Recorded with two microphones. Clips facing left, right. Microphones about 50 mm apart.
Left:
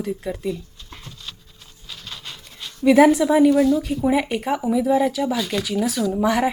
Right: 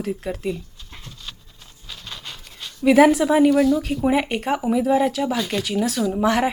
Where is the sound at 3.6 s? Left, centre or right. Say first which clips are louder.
Even; centre.